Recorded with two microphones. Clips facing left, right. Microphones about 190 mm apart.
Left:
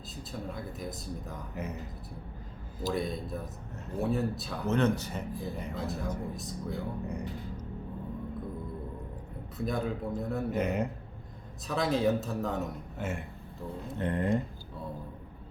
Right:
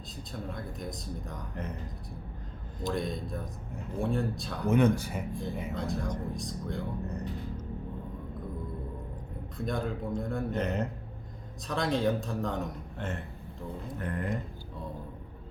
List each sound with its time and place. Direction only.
0.3 s speech: 5° left (ahead or behind)
2.8 s speech: 5° left (ahead or behind)
4.6 s speech: 10° right (ahead or behind)
5.3 s speech: 5° left (ahead or behind)
9.6 s speech: 5° left (ahead or behind)
14.0 s speech: 25° left (ahead or behind)